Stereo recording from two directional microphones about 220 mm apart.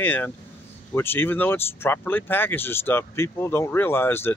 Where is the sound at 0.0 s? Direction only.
10° left (ahead or behind).